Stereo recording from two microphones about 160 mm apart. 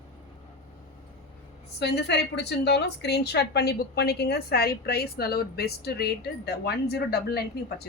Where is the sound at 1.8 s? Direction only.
90° left.